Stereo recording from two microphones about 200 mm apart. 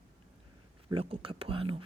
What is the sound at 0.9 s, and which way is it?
Speech, 25° right (ahead or behind).